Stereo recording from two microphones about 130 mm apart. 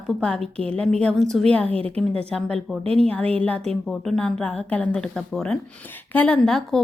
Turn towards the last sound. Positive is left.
turn(degrees=5)  # may be behind; listen again after turning